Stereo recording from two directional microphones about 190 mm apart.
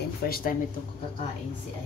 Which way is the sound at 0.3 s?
50° left (ahead or behind).